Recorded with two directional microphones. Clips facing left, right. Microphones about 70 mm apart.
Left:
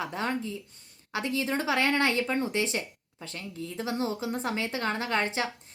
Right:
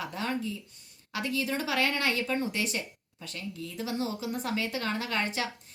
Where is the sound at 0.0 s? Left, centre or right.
Left.